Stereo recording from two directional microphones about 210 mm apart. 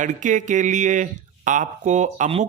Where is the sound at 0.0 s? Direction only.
35° right (ahead or behind).